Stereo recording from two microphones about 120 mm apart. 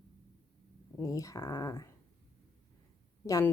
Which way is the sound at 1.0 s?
25° left (ahead or behind).